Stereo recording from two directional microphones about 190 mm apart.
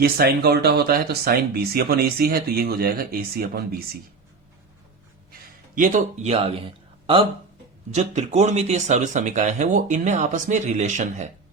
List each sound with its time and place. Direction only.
0.0 s speech: 55° right (ahead or behind)
5.3 s speech: 45° right (ahead or behind)